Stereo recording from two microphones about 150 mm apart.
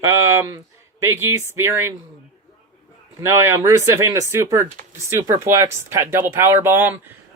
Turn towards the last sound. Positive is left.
turn(degrees=-15)  # may be behind; listen again after turning